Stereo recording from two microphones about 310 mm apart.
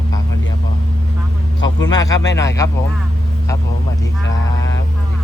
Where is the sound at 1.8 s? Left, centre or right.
Centre.